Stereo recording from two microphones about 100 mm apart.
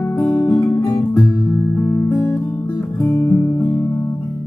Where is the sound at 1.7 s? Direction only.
25° left (ahead or behind).